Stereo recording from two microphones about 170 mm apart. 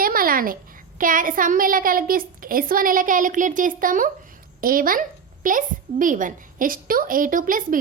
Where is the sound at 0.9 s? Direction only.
55° right (ahead or behind).